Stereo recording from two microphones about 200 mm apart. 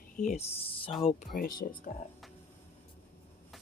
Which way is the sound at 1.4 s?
50° left (ahead or behind).